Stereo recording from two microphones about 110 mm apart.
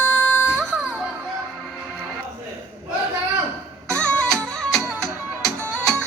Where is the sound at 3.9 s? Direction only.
10° left (ahead or behind).